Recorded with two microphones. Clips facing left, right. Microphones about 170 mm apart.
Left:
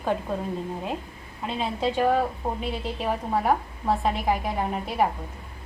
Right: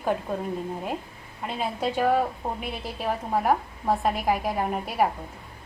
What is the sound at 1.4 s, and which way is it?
A woman's voice, 5° right (ahead or behind).